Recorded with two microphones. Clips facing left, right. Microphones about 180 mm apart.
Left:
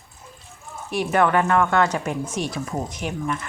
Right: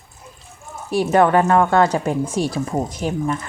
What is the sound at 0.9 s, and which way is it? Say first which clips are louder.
Speech: right 5 dB; 35° right (ahead or behind).